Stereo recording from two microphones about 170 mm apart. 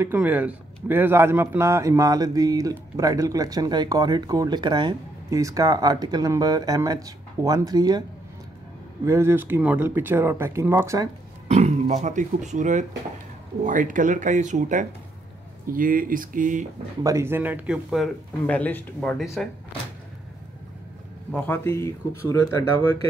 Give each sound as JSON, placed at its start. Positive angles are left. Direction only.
{"t": 0.0, "sound": "a man's voice", "side_deg": -10}
{"t": 9.0, "sound": "a man's voice", "side_deg": -15}
{"t": 11.4, "sound": "speech", "side_deg": -40}
{"t": 17.0, "sound": "a man's voice", "side_deg": -15}
{"t": 21.3, "sound": "speech", "side_deg": 10}